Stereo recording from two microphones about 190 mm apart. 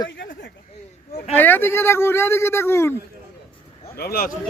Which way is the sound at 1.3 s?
10° left (ahead or behind).